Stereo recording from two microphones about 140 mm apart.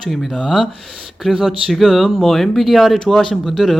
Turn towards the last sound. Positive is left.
turn(degrees=0)  # may be behind; listen again after turning